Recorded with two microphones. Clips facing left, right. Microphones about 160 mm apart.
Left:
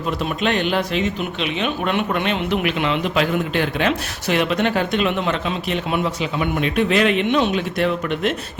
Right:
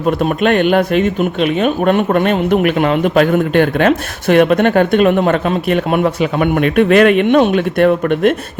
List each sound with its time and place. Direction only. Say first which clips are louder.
0.0 s speech: right 8 dB; 50° right (ahead or behind)